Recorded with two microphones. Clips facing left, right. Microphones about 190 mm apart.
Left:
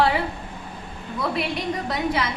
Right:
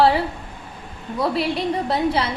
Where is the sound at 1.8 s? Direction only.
30° right (ahead or behind).